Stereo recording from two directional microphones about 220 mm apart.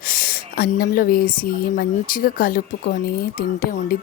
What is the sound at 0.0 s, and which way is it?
Speech, 40° left (ahead or behind).